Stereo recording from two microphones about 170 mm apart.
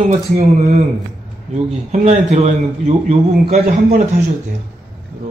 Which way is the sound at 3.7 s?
60° right (ahead or behind).